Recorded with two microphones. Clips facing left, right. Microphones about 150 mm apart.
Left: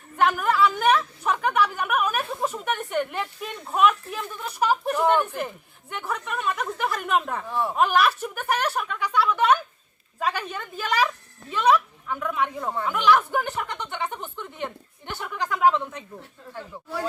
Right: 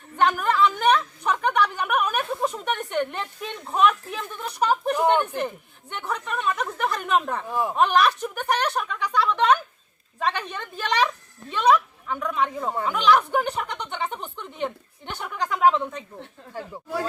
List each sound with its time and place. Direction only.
0.2 s a woman's voice: 5° left (ahead or behind)
4.9 s speech: 20° right (ahead or behind)
5.9 s a woman's voice: 5° left (ahead or behind)
12.5 s speech: 15° right (ahead or behind)
12.9 s a woman's voice: 5° left (ahead or behind)